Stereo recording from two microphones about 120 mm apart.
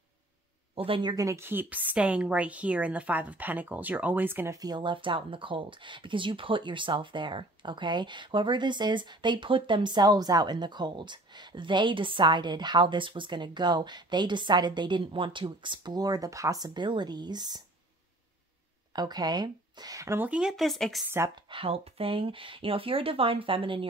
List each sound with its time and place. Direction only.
0.7 s speech: 45° right (ahead or behind)
1.1 s speech: 25° right (ahead or behind)
4.6 s speech: 35° right (ahead or behind)
18.9 s speech: 35° right (ahead or behind)
20.2 s speech: 5° right (ahead or behind)
21.5 s speech: 50° right (ahead or behind)